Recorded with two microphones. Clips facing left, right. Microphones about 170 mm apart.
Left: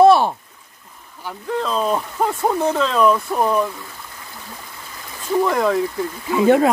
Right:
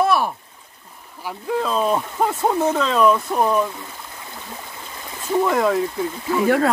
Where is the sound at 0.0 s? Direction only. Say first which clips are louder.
Left 7 dB; 30° left (ahead or behind).